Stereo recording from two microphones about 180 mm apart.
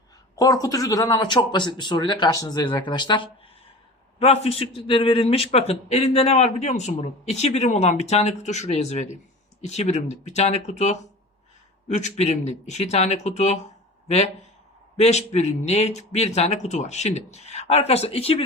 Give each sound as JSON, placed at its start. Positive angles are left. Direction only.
{"t": 0.3, "sound": "a man's voice", "side_deg": 20}
{"t": 14.9, "sound": "a man's voice", "side_deg": 40}